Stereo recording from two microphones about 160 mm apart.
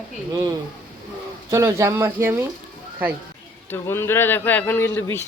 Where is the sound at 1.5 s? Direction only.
20° right (ahead or behind).